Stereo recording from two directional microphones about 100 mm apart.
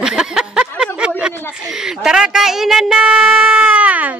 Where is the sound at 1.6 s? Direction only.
5° right (ahead or behind).